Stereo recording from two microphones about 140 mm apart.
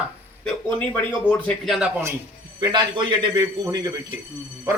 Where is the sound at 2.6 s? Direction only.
30° right (ahead or behind).